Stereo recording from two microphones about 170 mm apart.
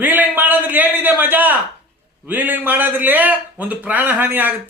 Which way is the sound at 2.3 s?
10° right (ahead or behind).